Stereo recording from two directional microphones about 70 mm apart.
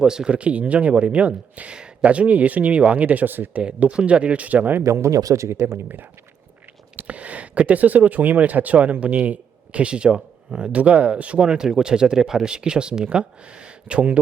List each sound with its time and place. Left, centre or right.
0.0 s speech: centre; by 3.6 s right
3.6 s speech: centre
4.8 s speech: right
7.1 s speech: centre